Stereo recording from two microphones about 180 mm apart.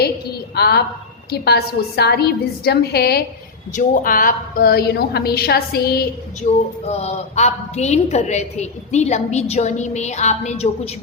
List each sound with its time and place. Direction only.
0.5 s a woman's voice: 65° left (ahead or behind)
3.7 s a woman's voice: 45° left (ahead or behind)
6.4 s a woman's voice: 35° left (ahead or behind)